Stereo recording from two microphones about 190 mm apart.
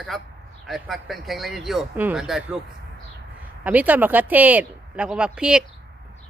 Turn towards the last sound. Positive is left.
turn(degrees=-5)  # may be behind; listen again after turning